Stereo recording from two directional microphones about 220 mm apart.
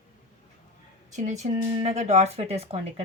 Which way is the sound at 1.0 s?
35° right (ahead or behind).